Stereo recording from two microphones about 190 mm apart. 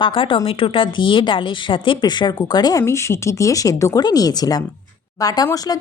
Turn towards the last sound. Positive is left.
turn(degrees=20)  # may be behind; listen again after turning